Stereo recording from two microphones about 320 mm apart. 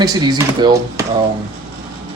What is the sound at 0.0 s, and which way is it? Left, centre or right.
Speech, centre.